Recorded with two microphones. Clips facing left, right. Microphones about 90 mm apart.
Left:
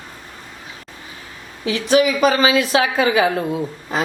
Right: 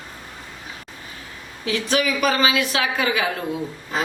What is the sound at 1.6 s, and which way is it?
A woman's voice, 25° left (ahead or behind).